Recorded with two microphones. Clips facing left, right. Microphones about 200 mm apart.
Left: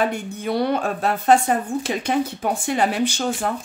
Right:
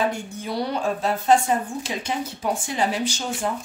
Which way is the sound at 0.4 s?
60° left (ahead or behind).